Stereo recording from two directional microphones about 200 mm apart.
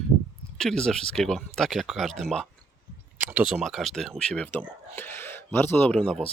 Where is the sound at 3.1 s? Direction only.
5° right (ahead or behind).